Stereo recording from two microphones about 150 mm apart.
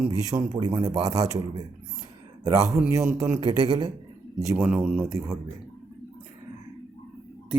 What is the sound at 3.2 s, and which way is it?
Speech, 20° right (ahead or behind).